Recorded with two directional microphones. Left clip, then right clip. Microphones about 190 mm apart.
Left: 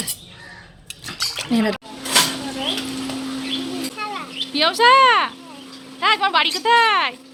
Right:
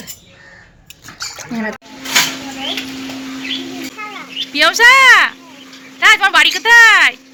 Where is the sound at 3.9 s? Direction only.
25° left (ahead or behind).